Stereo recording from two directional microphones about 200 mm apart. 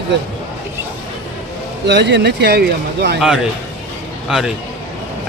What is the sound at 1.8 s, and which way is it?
Speech, 60° right (ahead or behind).